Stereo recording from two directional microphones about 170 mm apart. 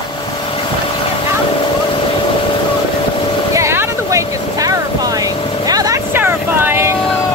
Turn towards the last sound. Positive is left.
turn(degrees=-15)  # may be behind; listen again after turning